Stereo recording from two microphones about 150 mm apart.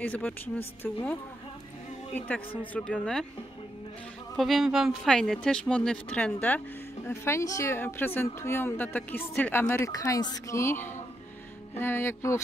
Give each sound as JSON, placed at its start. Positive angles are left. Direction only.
{"t": 0.0, "sound": "a woman's voice", "side_deg": 10}
{"t": 2.1, "sound": "a woman's voice", "side_deg": 10}
{"t": 4.4, "sound": "a woman's voice", "side_deg": 0}